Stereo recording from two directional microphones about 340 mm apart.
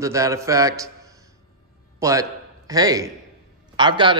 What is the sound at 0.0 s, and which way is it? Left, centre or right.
A man's voice, centre.